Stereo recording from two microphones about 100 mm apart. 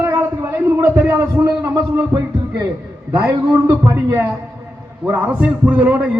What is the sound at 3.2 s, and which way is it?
A man's voice, 30° right (ahead or behind).